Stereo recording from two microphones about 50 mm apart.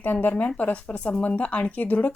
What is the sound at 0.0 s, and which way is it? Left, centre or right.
A woman's voice, left.